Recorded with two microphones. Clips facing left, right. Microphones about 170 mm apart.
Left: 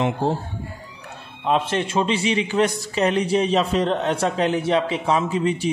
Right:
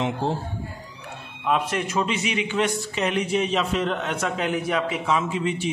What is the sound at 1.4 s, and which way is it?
A man's voice, 30° left (ahead or behind).